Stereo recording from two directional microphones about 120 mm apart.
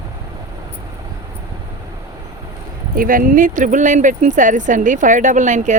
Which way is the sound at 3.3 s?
90° right.